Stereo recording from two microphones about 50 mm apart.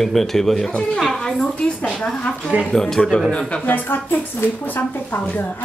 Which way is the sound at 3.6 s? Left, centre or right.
Left.